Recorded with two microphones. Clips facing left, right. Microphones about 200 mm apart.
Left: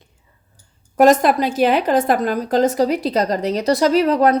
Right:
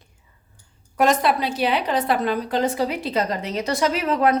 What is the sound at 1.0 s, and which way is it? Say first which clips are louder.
A woman's voice: left 6 dB; 45° left (ahead or behind).